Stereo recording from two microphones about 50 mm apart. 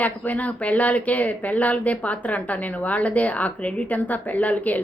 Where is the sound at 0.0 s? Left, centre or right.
Left.